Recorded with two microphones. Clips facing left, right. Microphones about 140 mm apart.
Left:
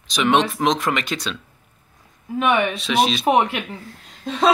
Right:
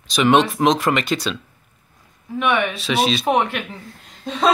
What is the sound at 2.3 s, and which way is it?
Speech, 30° left (ahead or behind).